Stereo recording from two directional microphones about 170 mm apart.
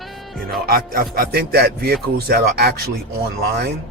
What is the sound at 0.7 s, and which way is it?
Speech, 60° right (ahead or behind).